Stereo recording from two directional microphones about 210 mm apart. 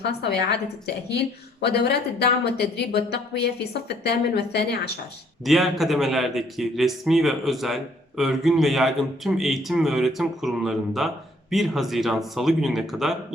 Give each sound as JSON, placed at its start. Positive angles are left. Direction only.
{"t": 0.0, "sound": "speech", "side_deg": 50}
{"t": 1.6, "sound": "speech", "side_deg": 50}
{"t": 5.5, "sound": "a man's voice", "side_deg": 0}